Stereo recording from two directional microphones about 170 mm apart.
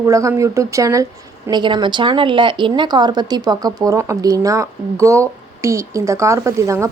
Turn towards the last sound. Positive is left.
turn(degrees=-15)  # may be behind; listen again after turning